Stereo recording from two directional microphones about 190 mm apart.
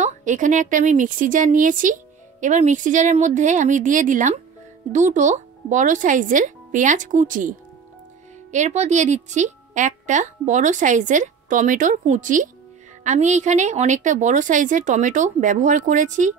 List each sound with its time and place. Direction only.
0.0 s a woman's voice: 40° right (ahead or behind)